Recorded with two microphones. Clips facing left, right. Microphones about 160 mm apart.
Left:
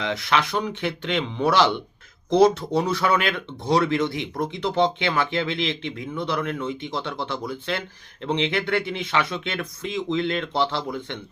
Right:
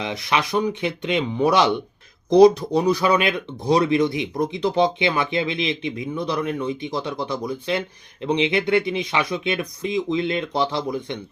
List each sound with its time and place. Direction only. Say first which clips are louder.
0.0 s speech: even; 15° right (ahead or behind)